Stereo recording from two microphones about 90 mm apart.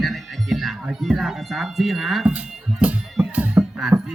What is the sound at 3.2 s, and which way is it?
Music, 15° right (ahead or behind).